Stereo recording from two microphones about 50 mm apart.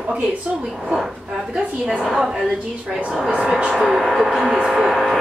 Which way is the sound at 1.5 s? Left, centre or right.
Centre.